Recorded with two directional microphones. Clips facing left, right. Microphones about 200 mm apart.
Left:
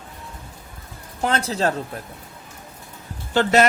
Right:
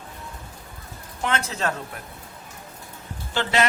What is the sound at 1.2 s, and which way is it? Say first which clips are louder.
Speech: left 4 dB; 35° left (ahead or behind).